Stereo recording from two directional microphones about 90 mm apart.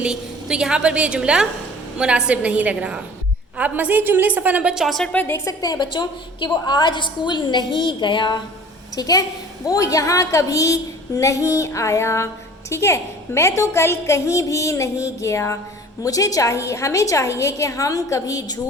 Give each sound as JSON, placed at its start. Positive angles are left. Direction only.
{"t": 0.0, "sound": "a woman's voice", "side_deg": -10}
{"t": 4.7, "sound": "a woman's voice", "side_deg": 0}
{"t": 5.2, "sound": "a woman's voice", "side_deg": 30}
{"t": 5.6, "sound": "a woman's voice", "side_deg": 45}
{"t": 5.9, "sound": "a woman's voice", "side_deg": 60}
{"t": 9.0, "sound": "a woman's voice", "side_deg": 45}